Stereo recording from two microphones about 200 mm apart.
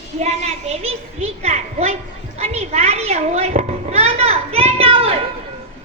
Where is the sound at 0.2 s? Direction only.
35° right (ahead or behind).